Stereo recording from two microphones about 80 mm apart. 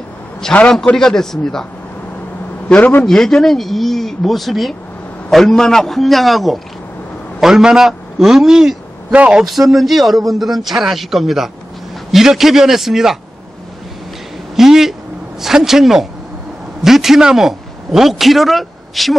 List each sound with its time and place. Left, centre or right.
0.7 s a man's voice: centre
2.7 s a man's voice: left
3.1 s a man's voice: centre
9.1 s speech: centre
9.4 s a man's voice: centre
14.5 s a man's voice: centre